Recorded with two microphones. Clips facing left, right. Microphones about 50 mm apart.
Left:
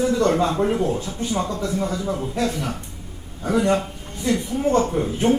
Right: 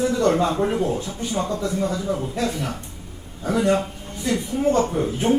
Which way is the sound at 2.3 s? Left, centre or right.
Centre.